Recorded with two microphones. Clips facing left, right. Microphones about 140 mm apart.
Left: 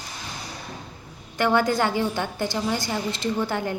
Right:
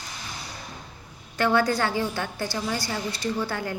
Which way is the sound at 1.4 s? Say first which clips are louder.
Left 1 dB; 15° left (ahead or behind).